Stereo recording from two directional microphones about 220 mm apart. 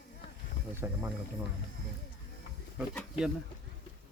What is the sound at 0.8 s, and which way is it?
Speech, 15° right (ahead or behind).